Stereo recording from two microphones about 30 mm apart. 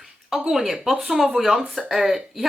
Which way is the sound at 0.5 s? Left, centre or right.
Centre.